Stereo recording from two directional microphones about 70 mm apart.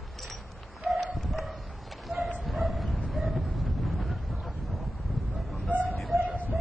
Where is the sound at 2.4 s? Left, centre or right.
Centre.